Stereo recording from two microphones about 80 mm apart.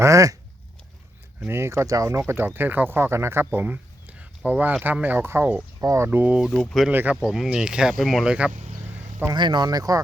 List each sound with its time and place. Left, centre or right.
0.0 s speech: right
1.5 s speech: right
5.8 s speech: right
6.1 s speech: right
6.7 s speech: centre
6.9 s speech: right
7.3 s speech: centre
9.3 s speech: right